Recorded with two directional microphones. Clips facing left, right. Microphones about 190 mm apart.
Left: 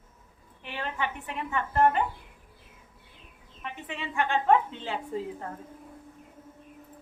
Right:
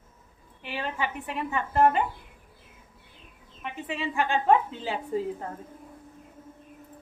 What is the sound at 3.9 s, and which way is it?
A woman's voice, 10° right (ahead or behind).